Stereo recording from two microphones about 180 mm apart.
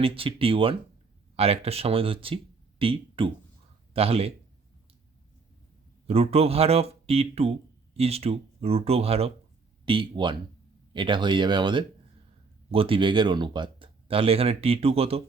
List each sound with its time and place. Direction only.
0.0 s speech: 30° right (ahead or behind)
6.1 s speech: 35° right (ahead or behind)